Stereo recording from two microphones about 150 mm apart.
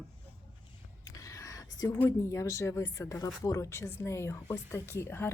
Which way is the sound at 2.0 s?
20° left (ahead or behind).